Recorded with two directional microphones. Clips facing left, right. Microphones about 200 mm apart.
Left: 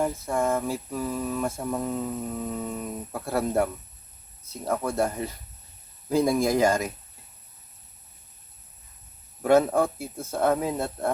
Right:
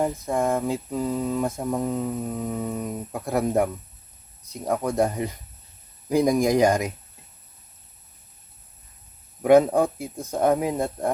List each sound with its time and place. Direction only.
0.0 s mantra: 20° right (ahead or behind)
9.4 s mantra: 15° right (ahead or behind)